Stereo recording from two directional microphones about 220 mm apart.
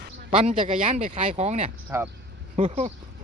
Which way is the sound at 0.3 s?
25° right (ahead or behind).